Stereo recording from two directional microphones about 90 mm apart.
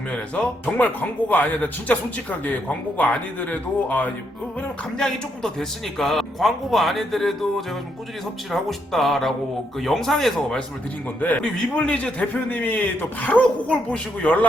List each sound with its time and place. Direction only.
0.1 s a man's voice: 15° left (ahead or behind)
3.0 s a man's voice: 15° left (ahead or behind)
4.9 s speech: 5° left (ahead or behind)
8.5 s speech: centre (ahead or behind)
11.2 s a man's voice: 15° left (ahead or behind)